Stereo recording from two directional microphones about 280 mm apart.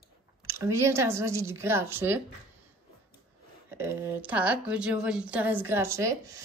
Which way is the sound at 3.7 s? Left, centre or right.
Centre.